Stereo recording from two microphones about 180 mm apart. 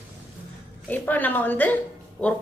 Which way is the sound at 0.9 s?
10° left (ahead or behind).